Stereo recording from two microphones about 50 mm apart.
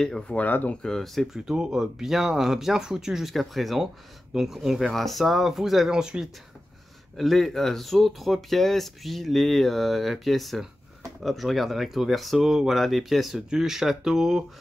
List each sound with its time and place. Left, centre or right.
0.0 s speech: centre
0.4 s speech: left
0.8 s speech: centre
1.3 s speech: centre
5.9 s speech: centre
7.2 s speech: centre